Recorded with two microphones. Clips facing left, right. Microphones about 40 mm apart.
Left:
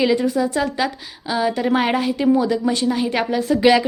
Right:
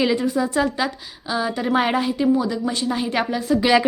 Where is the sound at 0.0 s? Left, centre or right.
Centre.